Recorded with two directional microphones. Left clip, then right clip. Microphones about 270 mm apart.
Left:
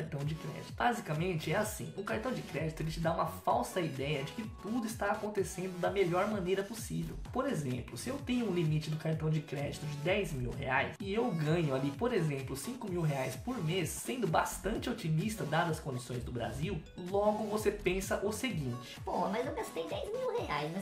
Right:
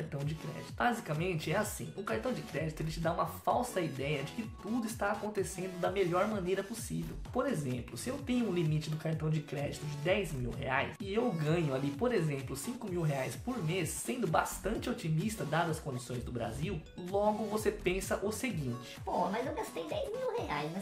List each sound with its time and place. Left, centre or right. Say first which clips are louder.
0.7 s speech: even; centre